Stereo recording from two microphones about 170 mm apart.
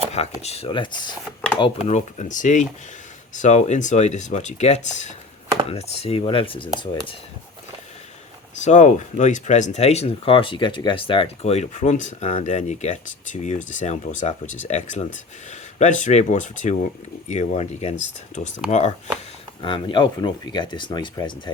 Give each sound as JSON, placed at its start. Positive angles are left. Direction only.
{"t": 0.1, "sound": "chopping", "side_deg": 40}
{"t": 1.9, "sound": "speech", "side_deg": 45}
{"t": 5.6, "sound": "chopping", "side_deg": 35}
{"t": 8.6, "sound": "speech", "side_deg": 45}
{"t": 18.7, "sound": "chopping", "side_deg": 40}
{"t": 19.6, "sound": "speech", "side_deg": 30}